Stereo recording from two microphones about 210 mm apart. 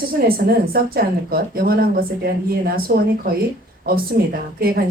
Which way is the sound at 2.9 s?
45° right (ahead or behind).